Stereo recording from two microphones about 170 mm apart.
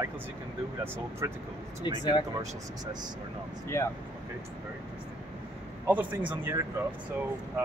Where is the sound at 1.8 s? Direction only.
25° left (ahead or behind).